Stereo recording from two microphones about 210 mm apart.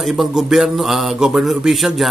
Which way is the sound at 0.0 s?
Centre (ahead or behind).